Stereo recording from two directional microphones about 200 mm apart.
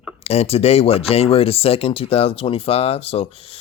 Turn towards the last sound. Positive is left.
turn(degrees=30)  # may be behind; listen again after turning